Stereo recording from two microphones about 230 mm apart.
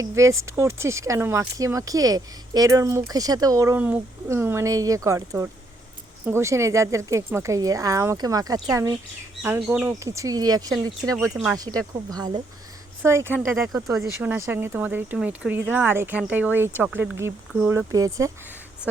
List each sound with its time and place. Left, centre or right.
0.0 s speech: centre
12.1 s speech: centre